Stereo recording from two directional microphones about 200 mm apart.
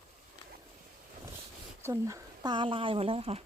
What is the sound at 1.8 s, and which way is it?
Speech, 15° right (ahead or behind).